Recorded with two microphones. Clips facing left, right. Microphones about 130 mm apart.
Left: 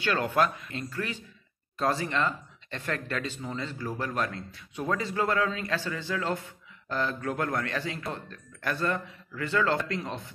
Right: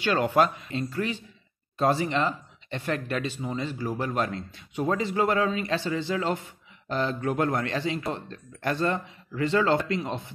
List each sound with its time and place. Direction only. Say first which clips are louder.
0.0 s speech: right 3 dB; 20° right (ahead or behind)